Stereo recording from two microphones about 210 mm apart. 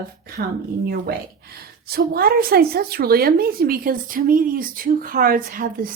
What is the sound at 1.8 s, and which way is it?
A woman's voice, 45° right (ahead or behind).